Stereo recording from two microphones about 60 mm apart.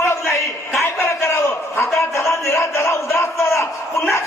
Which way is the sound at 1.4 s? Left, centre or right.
Left.